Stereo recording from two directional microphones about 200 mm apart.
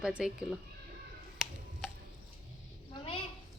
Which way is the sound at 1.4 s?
5° right (ahead or behind).